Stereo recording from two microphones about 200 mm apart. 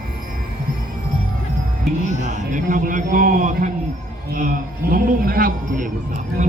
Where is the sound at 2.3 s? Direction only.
40° right (ahead or behind).